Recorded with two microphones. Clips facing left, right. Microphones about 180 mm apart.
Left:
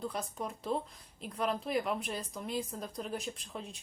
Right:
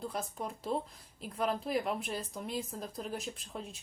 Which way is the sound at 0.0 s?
Centre (ahead or behind).